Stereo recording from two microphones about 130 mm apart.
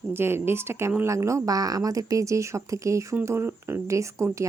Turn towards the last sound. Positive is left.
turn(degrees=-25)  # may be behind; listen again after turning